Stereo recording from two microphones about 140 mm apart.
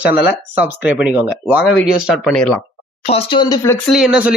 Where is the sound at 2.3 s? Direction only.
5° left (ahead or behind).